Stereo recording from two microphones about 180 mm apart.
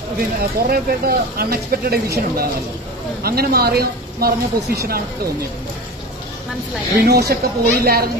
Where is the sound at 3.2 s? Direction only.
60° right (ahead or behind).